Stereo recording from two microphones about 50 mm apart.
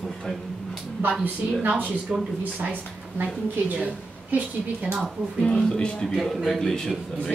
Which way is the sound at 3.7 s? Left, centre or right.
Right.